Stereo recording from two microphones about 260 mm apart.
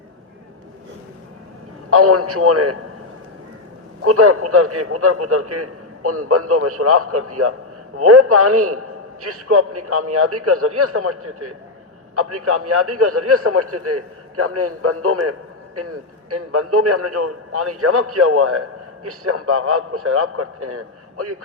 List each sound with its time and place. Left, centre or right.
1.9 s a man's voice: right
4.0 s a man's voice: right